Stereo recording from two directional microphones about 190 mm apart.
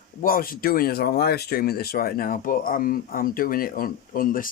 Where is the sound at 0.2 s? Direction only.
50° left (ahead or behind).